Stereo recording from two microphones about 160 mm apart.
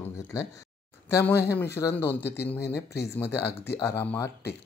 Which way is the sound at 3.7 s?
15° left (ahead or behind).